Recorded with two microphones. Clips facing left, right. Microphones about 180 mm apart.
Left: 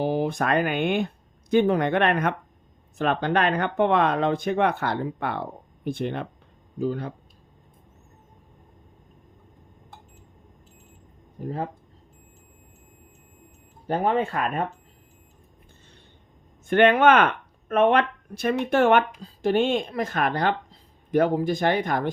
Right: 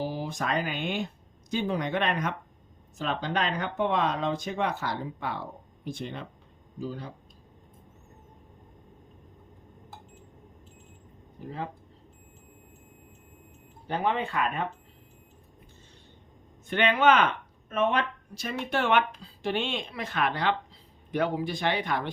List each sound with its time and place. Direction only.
0.0 s speech: 60° left (ahead or behind)
11.4 s speech: 45° left (ahead or behind)
13.8 s speech: 45° left (ahead or behind)
16.6 s speech: 50° left (ahead or behind)
18.7 s speech: 45° left (ahead or behind)